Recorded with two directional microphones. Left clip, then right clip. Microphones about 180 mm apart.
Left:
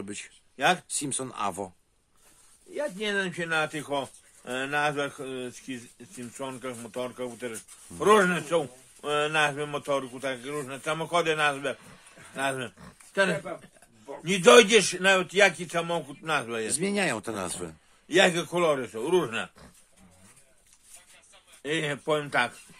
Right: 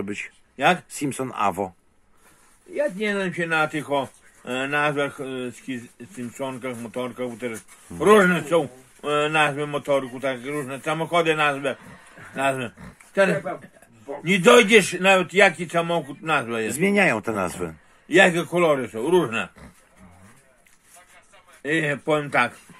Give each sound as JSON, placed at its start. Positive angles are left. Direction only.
{"t": 0.9, "sound": "speech", "side_deg": 35}
{"t": 2.7, "sound": "speech", "side_deg": 5}
{"t": 16.8, "sound": "speech", "side_deg": 30}
{"t": 18.0, "sound": "speech", "side_deg": 10}
{"t": 18.6, "sound": "speech", "side_deg": 0}
{"t": 21.6, "sound": "speech", "side_deg": 5}